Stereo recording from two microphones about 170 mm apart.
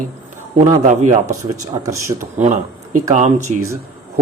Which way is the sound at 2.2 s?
45° right (ahead or behind).